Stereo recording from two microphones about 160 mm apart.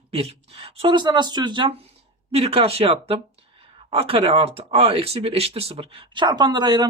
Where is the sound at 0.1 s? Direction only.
40° right (ahead or behind).